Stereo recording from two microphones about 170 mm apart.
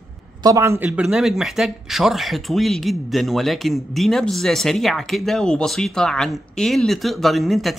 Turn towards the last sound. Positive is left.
turn(degrees=0)  # may be behind; listen again after turning